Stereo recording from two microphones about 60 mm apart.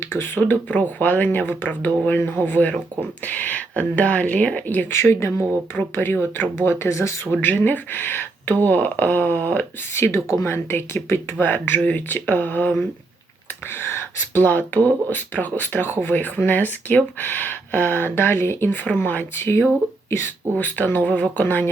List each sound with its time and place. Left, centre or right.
0.2 s a woman's voice: left
4.9 s speech: left
5.9 s speech: left
6.8 s speech: left
7.3 s a woman's voice: left
14.3 s speech: left
18.9 s a woman's voice: left
19.4 s speech: left
20.6 s a woman's voice: left